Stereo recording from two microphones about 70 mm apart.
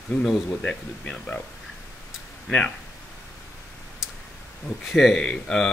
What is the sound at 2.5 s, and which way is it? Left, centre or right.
Speech, centre.